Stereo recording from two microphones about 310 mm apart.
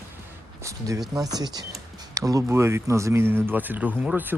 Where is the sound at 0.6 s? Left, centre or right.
Centre.